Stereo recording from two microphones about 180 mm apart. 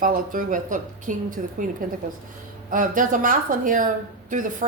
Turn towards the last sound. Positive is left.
turn(degrees=-45)  # may be behind; listen again after turning